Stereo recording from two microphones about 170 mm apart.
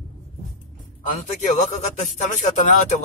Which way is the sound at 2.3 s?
45° left (ahead or behind).